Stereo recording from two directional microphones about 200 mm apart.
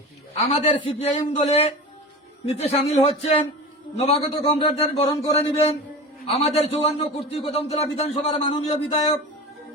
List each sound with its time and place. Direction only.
0.6 s speech: 30° left (ahead or behind)